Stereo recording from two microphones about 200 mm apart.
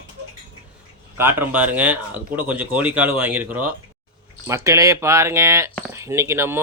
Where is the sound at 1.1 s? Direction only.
10° right (ahead or behind).